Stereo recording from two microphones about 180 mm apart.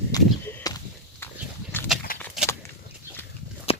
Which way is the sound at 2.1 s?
50° left (ahead or behind).